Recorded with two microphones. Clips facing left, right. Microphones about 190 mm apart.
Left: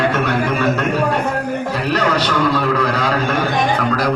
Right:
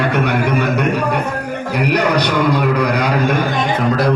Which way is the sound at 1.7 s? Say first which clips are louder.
Right 4 dB; 15° right (ahead or behind).